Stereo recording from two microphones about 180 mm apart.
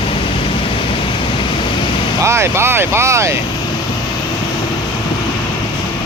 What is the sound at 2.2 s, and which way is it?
Speech, 15° right (ahead or behind).